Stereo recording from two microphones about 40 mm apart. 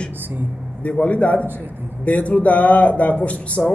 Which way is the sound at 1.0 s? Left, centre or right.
Left.